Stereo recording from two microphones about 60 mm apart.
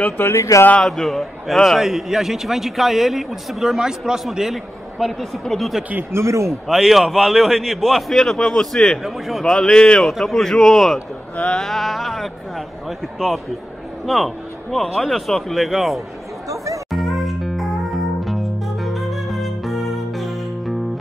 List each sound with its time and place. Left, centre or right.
0.2 s speech: left
0.7 s a man's voice: centre
4.9 s a man's voice: centre
6.1 s speech: right
6.7 s a man's voice: centre
11.3 s speech: left
11.6 s a man's voice: centre
14.0 s a man's voice: centre
16.4 s speech: right
16.9 s music: centre